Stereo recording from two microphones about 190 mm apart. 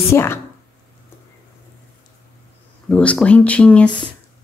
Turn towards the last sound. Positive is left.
turn(degrees=25)  # may be behind; listen again after turning